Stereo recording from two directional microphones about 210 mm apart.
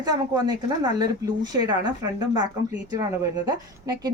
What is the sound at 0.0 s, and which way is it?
Speech, 20° right (ahead or behind).